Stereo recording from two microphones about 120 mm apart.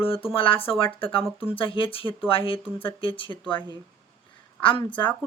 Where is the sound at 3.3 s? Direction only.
25° left (ahead or behind).